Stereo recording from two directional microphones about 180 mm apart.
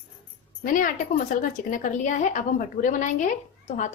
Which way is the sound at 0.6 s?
50° left (ahead or behind).